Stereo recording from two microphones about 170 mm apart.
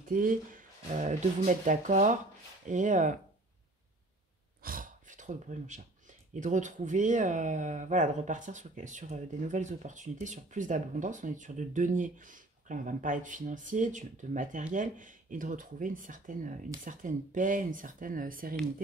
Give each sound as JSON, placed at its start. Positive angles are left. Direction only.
{"t": 0.0, "sound": "speech", "side_deg": -55}
{"t": 4.6, "sound": "a sound", "side_deg": -55}
{"t": 6.4, "sound": "speech", "side_deg": -45}